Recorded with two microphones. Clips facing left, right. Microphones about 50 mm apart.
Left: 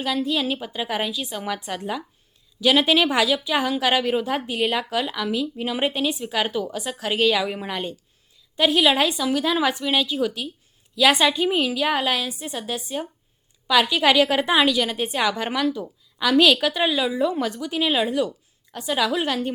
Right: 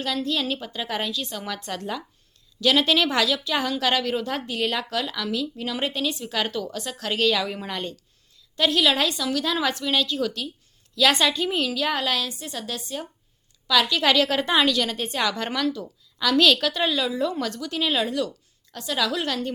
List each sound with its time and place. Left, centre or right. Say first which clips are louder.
0.0 s a woman's voice: left 3 dB; centre